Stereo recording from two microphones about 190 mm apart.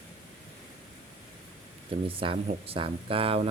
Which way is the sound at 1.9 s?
30° right (ahead or behind).